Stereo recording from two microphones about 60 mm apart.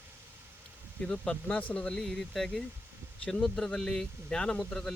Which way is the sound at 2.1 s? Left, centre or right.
Centre.